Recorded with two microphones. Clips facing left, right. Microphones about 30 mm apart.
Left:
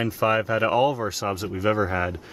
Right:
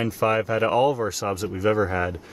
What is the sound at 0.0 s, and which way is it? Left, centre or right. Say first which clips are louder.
Speech: even; centre.